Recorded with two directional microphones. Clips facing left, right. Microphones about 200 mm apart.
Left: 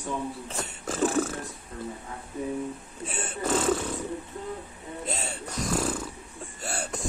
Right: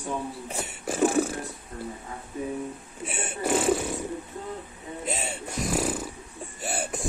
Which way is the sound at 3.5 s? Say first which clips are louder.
Right 2 dB; 15° right (ahead or behind).